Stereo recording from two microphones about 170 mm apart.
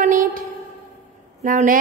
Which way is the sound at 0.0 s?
50° right (ahead or behind).